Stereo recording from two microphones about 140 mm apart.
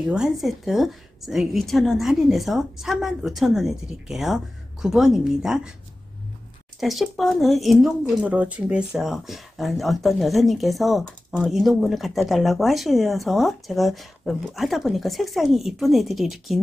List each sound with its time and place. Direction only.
0.0 s speech: 5° right (ahead or behind)
6.8 s speech: centre (ahead or behind)